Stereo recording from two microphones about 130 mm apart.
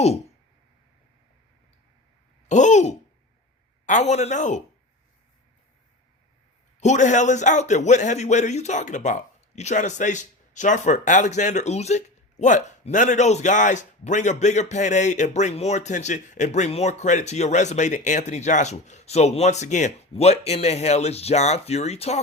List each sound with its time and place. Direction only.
2.5 s speech: 65° left (ahead or behind)
6.7 s speech: 65° left (ahead or behind)